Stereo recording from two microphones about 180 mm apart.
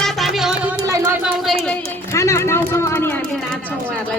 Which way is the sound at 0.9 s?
15° right (ahead or behind).